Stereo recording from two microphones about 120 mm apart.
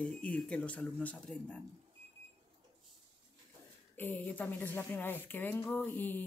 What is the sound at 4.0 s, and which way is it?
Speech, 15° left (ahead or behind).